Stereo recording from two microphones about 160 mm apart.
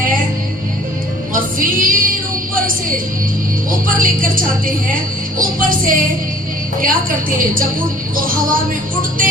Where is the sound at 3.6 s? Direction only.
60° right (ahead or behind).